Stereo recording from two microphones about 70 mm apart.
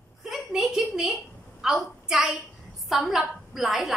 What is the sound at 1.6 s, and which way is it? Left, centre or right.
A woman's voice, centre.